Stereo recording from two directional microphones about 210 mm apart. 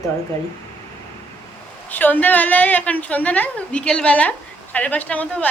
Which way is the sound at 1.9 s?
10° left (ahead or behind).